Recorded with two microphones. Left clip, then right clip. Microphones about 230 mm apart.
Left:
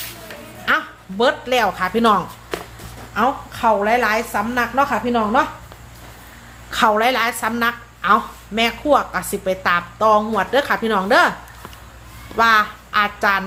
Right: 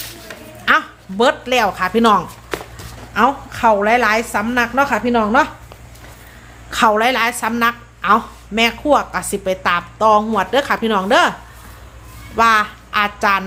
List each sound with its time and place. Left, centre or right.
0.7 s a woman's voice: centre
6.7 s a woman's voice: centre
12.4 s a woman's voice: centre